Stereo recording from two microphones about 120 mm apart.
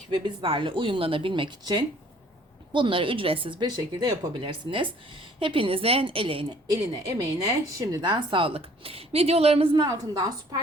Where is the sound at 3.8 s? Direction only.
30° right (ahead or behind); by 6.4 s 50° right (ahead or behind).